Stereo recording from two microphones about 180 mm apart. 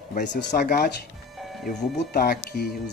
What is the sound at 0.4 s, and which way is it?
Speech, 60° left (ahead or behind).